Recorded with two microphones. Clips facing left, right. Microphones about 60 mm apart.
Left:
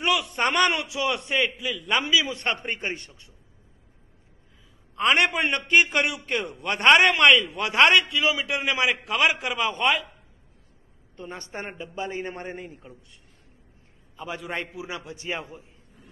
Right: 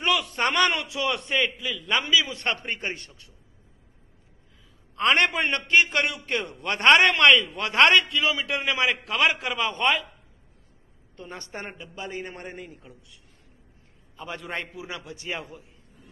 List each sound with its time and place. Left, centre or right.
0.0 s a sound: centre
0.5 s a man's voice: centre
4.9 s a man's voice: centre
11.1 s a man's voice: left
14.1 s a man's voice: centre